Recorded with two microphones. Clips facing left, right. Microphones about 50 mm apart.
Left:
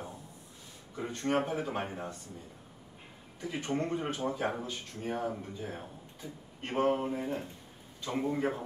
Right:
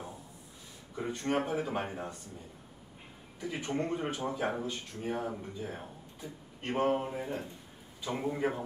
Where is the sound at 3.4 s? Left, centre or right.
Centre.